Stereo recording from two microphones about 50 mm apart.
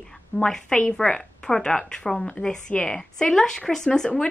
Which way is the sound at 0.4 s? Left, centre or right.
Centre.